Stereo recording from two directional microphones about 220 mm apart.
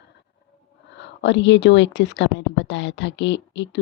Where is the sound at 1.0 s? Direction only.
55° left (ahead or behind).